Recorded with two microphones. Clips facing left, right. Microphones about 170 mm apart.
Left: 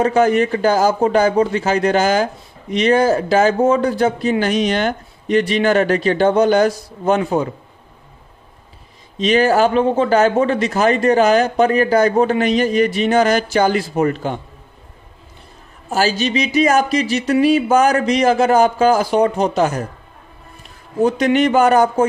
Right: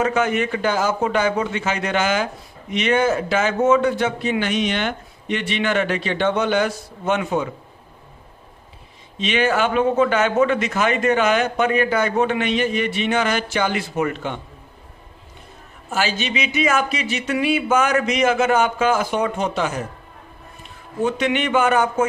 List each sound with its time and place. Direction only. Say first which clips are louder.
0.0 s speech: left 6 dB; 35° left (ahead or behind)
9.2 s speech: left 6 dB; 40° left (ahead or behind)
15.9 s speech: left 6 dB; 40° left (ahead or behind)
21.0 s speech: left 6 dB; 40° left (ahead or behind)